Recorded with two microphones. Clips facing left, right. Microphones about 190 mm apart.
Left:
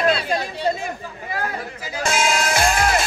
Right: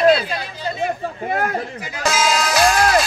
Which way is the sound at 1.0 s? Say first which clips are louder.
Right 6 dB; 60° right (ahead or behind).